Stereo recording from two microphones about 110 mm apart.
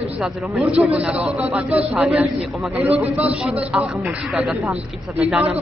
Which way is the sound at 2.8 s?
15° right (ahead or behind).